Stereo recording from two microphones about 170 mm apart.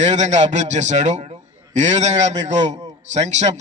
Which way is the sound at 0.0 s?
45° right (ahead or behind).